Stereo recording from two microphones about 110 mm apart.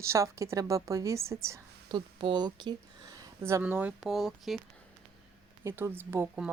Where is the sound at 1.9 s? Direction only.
45° right (ahead or behind).